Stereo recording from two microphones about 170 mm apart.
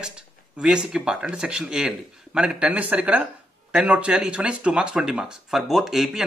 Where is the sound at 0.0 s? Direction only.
5° right (ahead or behind).